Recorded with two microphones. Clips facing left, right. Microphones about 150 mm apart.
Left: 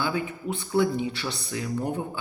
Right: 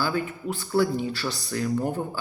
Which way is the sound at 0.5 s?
20° left (ahead or behind).